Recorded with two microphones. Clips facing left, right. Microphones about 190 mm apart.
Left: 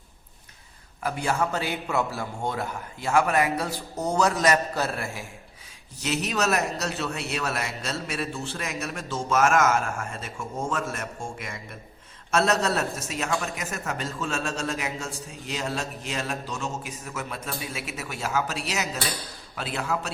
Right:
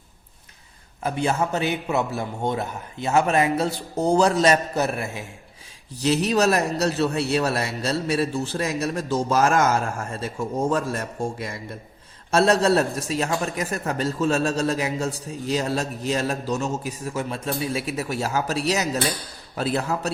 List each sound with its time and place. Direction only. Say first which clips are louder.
1.0 s a man's voice: right 3 dB; 20° right (ahead or behind)
6.0 s a man's voice: right 7 dB; 35° right (ahead or behind)